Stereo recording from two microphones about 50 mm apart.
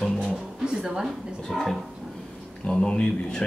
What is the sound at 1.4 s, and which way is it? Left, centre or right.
Speech, centre.